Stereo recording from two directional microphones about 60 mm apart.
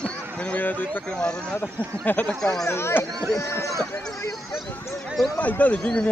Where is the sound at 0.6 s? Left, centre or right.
Left.